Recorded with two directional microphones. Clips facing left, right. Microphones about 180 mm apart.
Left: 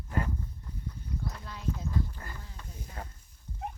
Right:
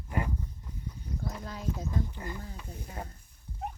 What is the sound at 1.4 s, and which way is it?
Clip-clop, 40° right (ahead or behind).